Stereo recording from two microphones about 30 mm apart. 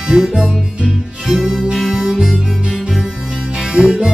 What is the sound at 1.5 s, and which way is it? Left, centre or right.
Harmonica, right.